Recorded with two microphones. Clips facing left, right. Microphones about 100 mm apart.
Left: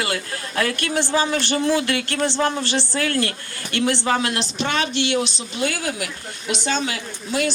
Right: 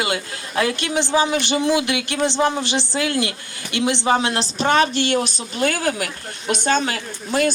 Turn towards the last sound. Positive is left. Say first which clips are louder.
# right 3 dB
turn(degrees=-45)  # may be behind; listen again after turning